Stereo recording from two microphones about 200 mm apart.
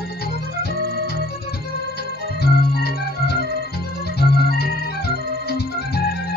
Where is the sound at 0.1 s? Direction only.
50° left (ahead or behind).